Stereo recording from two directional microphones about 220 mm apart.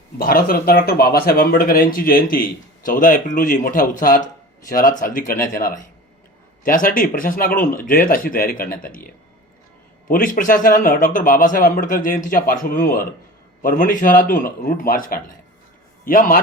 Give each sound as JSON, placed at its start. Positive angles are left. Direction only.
{"t": 0.2, "sound": "speech", "side_deg": 40}